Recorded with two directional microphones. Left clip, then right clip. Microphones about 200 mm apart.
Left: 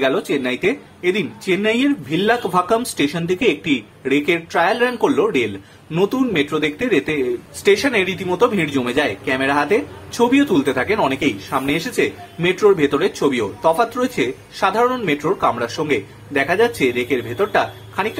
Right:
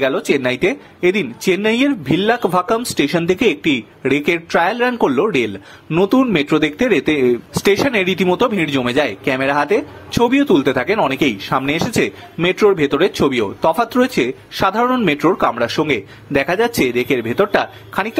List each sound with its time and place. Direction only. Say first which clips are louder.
0.0 s speech: right 2 dB; 40° right (ahead or behind)